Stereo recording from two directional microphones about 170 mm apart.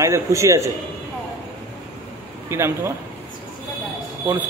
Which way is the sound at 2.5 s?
15° right (ahead or behind).